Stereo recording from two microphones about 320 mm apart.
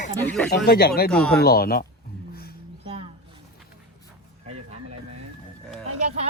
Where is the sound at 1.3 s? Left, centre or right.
Left.